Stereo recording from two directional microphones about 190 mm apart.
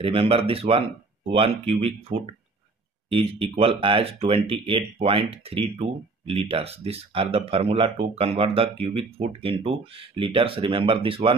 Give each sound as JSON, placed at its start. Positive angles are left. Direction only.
{"t": 0.0, "sound": "speech", "side_deg": -30}